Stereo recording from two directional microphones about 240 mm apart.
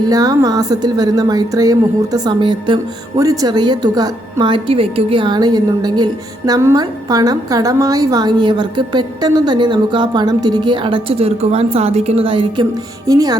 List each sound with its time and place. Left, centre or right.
0.1 s a woman's voice: centre